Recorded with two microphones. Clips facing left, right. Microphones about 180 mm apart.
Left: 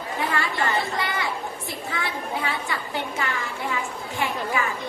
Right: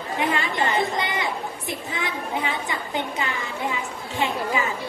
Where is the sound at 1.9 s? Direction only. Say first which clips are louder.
Even; 20° right (ahead or behind).